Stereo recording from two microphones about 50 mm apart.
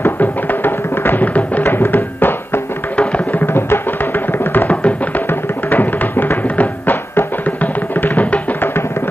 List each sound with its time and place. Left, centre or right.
0.0 s music: left
1.7 s music: left
4.6 s music: left
5.3 s music: left